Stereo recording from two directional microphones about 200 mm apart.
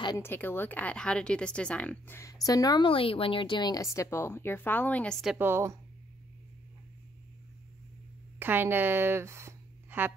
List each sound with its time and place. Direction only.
0.0 s a woman's voice: 20° left (ahead or behind)
0.3 s a woman's voice: 10° left (ahead or behind); by 5.8 s 10° right (ahead or behind)
8.4 s speech: 10° right (ahead or behind)